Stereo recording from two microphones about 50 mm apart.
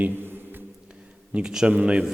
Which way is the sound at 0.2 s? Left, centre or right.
Right.